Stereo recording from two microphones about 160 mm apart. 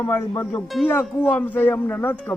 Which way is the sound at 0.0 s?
15° left (ahead or behind).